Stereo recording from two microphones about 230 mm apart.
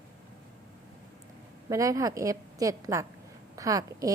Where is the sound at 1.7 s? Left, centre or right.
Centre.